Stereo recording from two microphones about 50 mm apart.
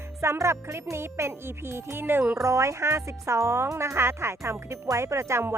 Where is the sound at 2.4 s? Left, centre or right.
Right.